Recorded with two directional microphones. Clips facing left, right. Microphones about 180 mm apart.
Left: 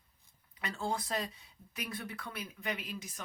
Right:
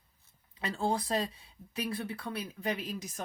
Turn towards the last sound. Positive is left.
turn(degrees=-40)  # may be behind; listen again after turning